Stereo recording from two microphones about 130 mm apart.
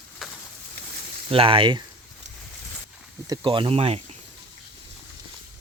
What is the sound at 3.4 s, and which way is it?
Speech, 40° right (ahead or behind).